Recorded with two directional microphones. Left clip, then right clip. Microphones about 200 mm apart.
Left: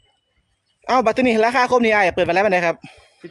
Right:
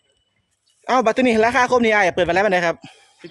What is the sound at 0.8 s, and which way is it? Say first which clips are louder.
Speech: even; centre (ahead or behind).